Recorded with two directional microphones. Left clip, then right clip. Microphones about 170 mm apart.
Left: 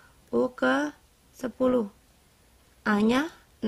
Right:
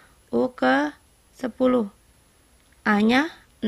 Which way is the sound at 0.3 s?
10° right (ahead or behind).